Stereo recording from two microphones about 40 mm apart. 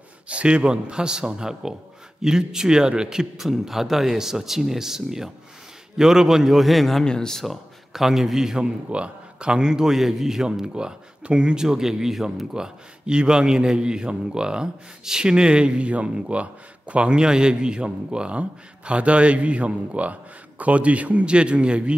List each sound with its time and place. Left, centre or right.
0.3 s a man's voice: right; by 7.1 s centre
7.1 s speech: centre
7.4 s a man's voice: centre
8.5 s a man's voice: right
11.6 s speech: centre
12.5 s a man's voice: right
21.3 s a man's voice: right